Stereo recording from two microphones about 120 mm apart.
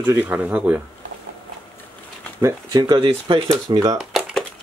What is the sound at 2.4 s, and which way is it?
Speech, 25° right (ahead or behind).